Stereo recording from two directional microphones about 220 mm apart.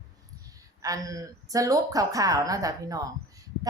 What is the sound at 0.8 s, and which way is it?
A woman's voice, 15° right (ahead or behind).